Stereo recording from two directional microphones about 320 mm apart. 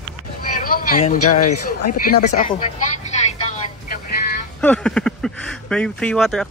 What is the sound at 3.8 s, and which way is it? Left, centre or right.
Vehicle, left.